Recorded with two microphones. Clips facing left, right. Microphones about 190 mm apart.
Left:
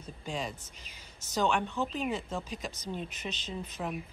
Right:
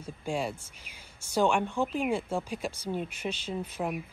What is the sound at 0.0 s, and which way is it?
Speech, 10° right (ahead or behind).